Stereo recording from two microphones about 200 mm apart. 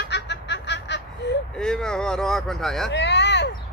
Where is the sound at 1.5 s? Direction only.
5° left (ahead or behind).